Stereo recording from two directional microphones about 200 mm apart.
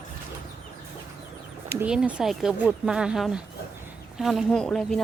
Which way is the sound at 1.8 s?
5° right (ahead or behind).